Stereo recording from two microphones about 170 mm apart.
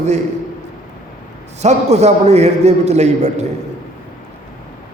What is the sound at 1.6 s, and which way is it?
A man's voice, 40° right (ahead or behind).